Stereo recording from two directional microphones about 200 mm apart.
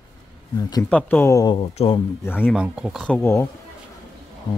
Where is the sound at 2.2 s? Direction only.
10° left (ahead or behind).